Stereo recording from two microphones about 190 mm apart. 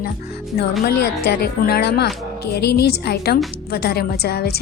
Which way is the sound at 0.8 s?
55° left (ahead or behind).